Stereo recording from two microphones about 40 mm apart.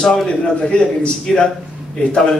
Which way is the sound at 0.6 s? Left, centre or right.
Left.